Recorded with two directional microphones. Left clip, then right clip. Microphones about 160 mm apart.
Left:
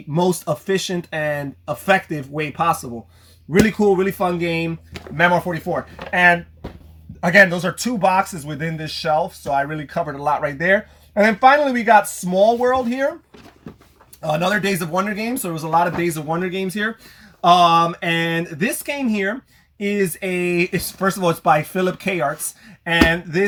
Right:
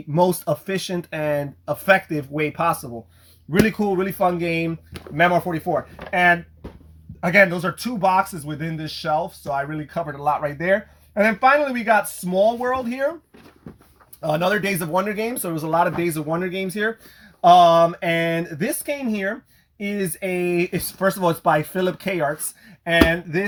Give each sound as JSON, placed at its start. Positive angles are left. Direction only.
{"t": 0.1, "sound": "speech", "side_deg": -25}
{"t": 14.2, "sound": "speech", "side_deg": -30}